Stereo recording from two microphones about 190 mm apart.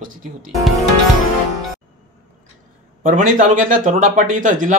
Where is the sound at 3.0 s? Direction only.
45° right (ahead or behind).